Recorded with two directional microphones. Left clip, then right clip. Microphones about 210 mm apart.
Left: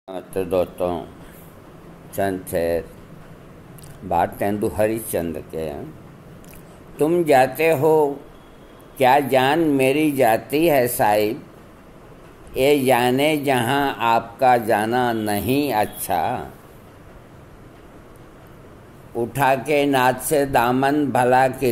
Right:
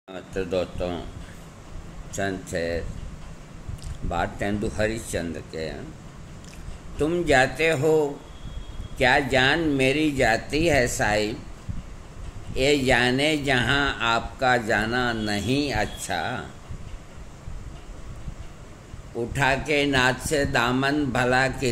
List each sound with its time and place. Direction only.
0.1 s speech: 5° left (ahead or behind)
2.1 s speech: centre (ahead or behind)
4.1 s speech: centre (ahead or behind)
7.0 s speech: centre (ahead or behind)
12.5 s speech: centre (ahead or behind)
19.1 s speech: centre (ahead or behind)